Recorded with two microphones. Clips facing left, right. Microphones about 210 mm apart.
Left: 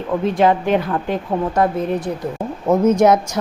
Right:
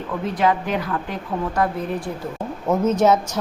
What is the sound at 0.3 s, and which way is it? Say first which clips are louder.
A woman's voice: left 4 dB; 25° left (ahead or behind).